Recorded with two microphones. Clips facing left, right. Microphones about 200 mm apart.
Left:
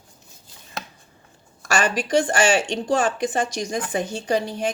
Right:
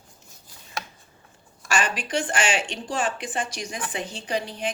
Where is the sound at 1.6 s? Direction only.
40° left (ahead or behind).